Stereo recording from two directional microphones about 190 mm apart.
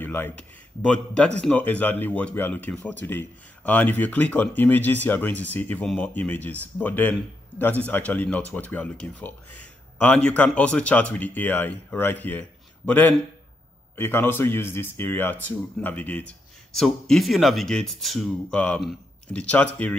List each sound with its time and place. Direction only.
0.0 s speech: 10° left (ahead or behind)